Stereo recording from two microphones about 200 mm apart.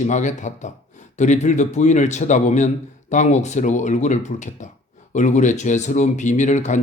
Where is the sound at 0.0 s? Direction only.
35° left (ahead or behind).